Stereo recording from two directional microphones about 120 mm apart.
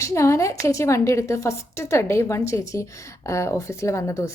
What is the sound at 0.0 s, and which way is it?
A woman's voice, 25° left (ahead or behind).